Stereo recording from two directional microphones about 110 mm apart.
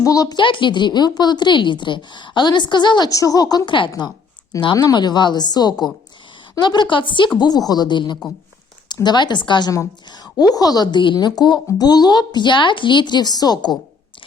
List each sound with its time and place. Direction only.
0.0 s speech: 30° left (ahead or behind)
0.3 s a woman's voice: 50° left (ahead or behind)
3.1 s a woman's voice: 30° left (ahead or behind)